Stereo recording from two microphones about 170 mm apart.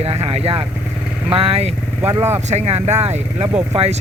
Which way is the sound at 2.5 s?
40° right (ahead or behind).